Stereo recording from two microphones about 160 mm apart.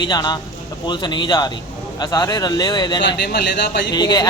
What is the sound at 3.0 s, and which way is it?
Speech, 90° left.